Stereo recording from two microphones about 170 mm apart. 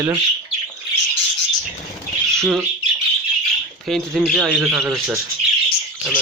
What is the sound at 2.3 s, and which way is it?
Speech, centre (ahead or behind).